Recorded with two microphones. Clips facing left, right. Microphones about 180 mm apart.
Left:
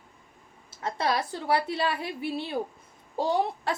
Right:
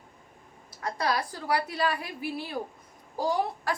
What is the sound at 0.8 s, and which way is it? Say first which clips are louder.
A woman's voice: left 1 dB; 25° left (ahead or behind).